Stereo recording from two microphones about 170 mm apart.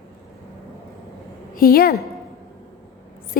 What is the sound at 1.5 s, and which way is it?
Speech, 60° left (ahead or behind).